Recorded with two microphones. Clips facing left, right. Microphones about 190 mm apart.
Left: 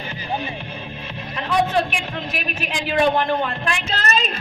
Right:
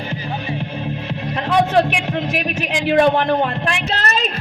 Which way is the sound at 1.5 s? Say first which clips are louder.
Right 4 dB; 70° right (ahead or behind).